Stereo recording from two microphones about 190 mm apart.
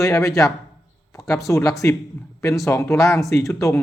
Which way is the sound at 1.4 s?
15° left (ahead or behind).